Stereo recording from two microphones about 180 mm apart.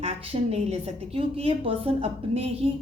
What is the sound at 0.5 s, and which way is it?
A woman's voice, 30° right (ahead or behind).